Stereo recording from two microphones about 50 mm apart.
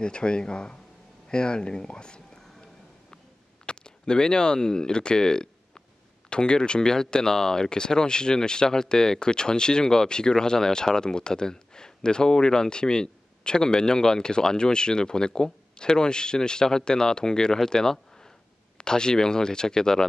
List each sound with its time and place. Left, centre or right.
0.0 s speech: centre
3.6 s speech: centre